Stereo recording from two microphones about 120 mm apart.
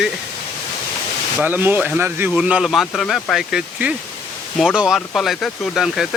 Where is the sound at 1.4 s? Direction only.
15° right (ahead or behind).